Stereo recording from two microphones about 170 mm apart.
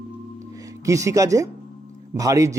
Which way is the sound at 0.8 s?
20° right (ahead or behind).